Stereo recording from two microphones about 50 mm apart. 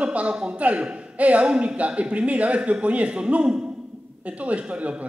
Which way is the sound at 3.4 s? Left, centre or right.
Centre.